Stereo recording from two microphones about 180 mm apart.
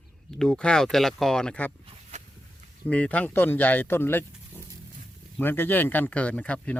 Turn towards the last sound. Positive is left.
turn(degrees=5)  # may be behind; listen again after turning